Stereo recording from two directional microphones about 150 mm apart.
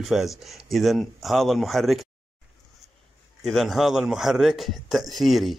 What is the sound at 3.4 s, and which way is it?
Speech, centre (ahead or behind).